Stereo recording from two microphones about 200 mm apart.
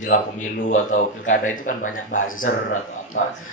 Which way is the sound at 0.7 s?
40° left (ahead or behind).